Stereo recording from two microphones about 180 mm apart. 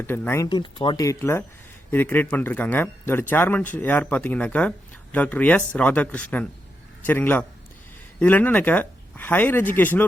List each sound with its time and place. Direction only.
0.0 s speech: 15° left (ahead or behind)
0.4 s speech: 25° left (ahead or behind); by 10.1 s 10° left (ahead or behind)